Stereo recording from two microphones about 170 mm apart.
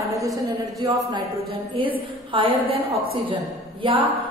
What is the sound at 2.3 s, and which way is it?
A woman's voice, 30° right (ahead or behind).